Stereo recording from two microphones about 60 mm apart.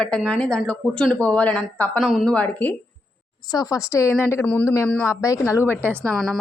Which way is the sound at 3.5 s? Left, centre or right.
Left.